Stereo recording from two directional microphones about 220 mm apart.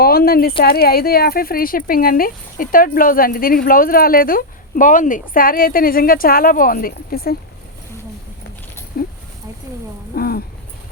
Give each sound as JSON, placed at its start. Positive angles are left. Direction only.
{"t": 0.0, "sound": "speech", "side_deg": 45}
{"t": 8.9, "sound": "speech", "side_deg": 40}
{"t": 10.2, "sound": "a sound", "side_deg": 45}